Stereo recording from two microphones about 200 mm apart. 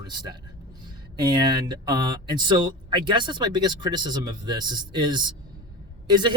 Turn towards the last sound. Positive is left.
turn(degrees=-20)  # may be behind; listen again after turning